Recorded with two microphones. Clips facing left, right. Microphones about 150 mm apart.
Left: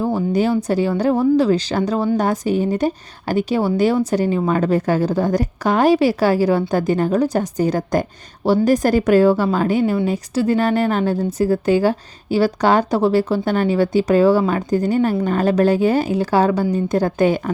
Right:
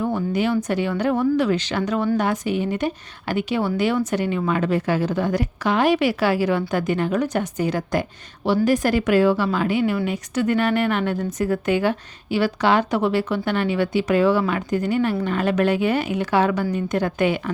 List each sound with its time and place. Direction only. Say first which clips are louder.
0.0 s a woman's voice: left 4 dB; 35° left (ahead or behind)